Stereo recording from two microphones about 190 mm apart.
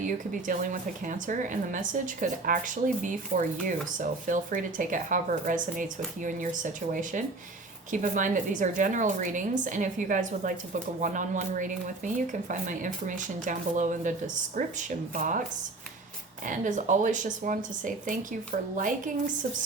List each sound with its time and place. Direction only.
0.0 s speech: 45° right (ahead or behind)
16.5 s speech: 40° right (ahead or behind)